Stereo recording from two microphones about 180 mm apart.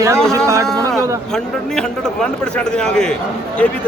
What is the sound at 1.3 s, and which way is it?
A man's voice, 5° left (ahead or behind).